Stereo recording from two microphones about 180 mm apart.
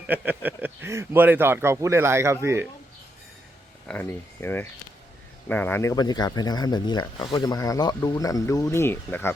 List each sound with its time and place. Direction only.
0.1 s speech: 10° right (ahead or behind)
3.8 s speech: 10° left (ahead or behind)